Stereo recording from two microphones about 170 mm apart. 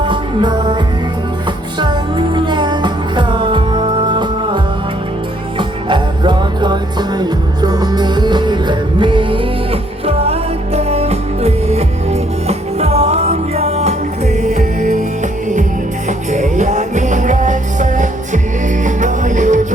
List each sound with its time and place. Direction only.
0.0 s music: 30° right (ahead or behind)
1.8 s music: 25° right (ahead or behind); by 15.0 s 45° right (ahead or behind)
16.0 s music: 45° right (ahead or behind)